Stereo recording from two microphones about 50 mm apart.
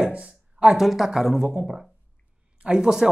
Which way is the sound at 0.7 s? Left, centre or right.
Centre.